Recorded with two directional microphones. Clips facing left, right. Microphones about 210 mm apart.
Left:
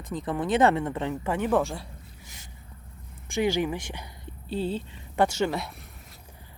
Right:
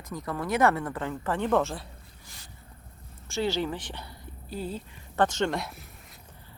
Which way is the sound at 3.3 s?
15° left (ahead or behind).